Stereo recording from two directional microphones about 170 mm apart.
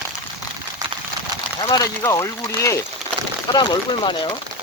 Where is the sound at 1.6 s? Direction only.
20° left (ahead or behind).